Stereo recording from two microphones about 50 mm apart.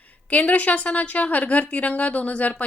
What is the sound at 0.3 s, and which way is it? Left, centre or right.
A woman's voice, left.